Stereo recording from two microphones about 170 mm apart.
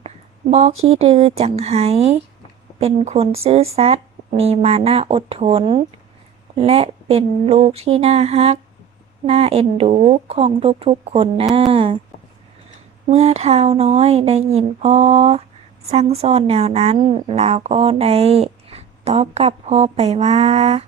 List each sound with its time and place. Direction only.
0.5 s a woman's voice: 40° right (ahead or behind)
13.1 s a woman's voice: 40° right (ahead or behind)